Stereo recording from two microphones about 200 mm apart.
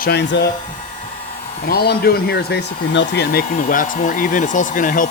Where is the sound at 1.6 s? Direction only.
50° left (ahead or behind).